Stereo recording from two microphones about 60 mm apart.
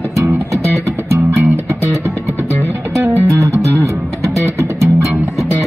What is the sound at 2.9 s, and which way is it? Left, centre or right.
Music, right.